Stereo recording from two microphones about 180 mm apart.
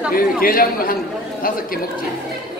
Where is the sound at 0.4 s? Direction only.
55° left (ahead or behind).